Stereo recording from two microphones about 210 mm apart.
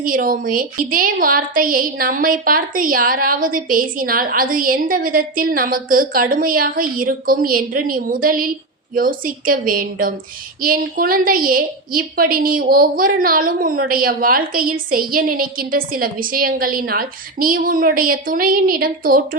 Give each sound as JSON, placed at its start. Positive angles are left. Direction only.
{"t": 0.0, "sound": "a woman's voice", "side_deg": -40}